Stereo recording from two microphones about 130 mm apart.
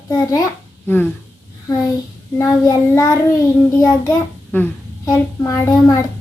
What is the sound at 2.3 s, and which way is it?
Speech, 25° left (ahead or behind).